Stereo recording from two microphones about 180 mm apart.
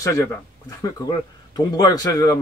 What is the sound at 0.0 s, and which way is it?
Speech, 20° left (ahead or behind).